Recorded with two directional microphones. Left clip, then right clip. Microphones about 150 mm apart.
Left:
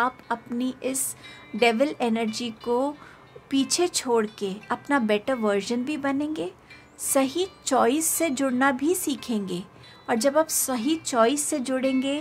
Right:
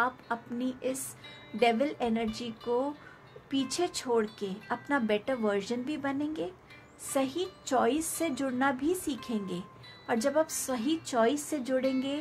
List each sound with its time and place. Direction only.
0.0 s a woman's voice: 50° left (ahead or behind)